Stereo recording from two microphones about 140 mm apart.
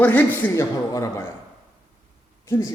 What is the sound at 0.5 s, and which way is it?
Speech, 20° left (ahead or behind).